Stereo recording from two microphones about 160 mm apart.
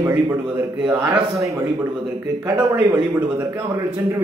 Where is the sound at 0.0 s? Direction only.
15° right (ahead or behind).